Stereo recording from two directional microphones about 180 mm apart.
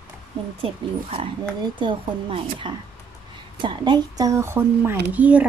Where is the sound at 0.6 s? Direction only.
30° right (ahead or behind).